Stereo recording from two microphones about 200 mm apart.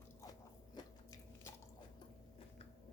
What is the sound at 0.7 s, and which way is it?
Biting, 15° left (ahead or behind).